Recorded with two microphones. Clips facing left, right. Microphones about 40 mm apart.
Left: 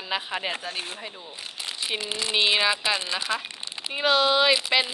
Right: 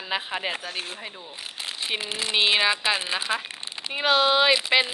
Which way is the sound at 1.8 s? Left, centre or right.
Centre.